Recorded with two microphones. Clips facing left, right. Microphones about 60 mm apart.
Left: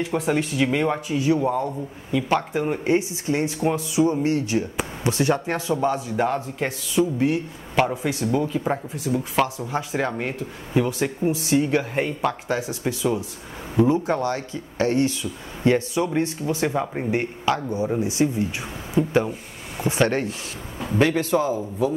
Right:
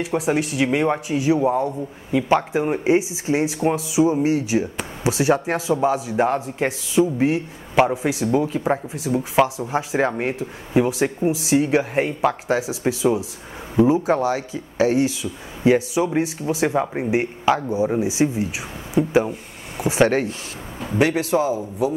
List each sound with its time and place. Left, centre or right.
0.0 s speech: centre
20.8 s speech: centre